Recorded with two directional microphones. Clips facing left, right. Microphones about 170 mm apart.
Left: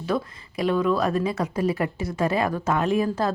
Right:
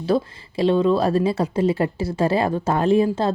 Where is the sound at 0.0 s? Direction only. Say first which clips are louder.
Right 5 dB; 30° right (ahead or behind).